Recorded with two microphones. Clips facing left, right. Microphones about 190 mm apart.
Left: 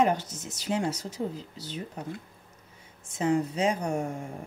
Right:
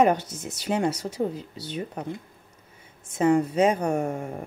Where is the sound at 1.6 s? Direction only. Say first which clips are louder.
Right 5 dB; 65° right (ahead or behind).